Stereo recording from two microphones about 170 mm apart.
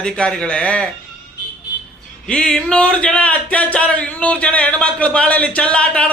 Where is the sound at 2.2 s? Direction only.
5° left (ahead or behind).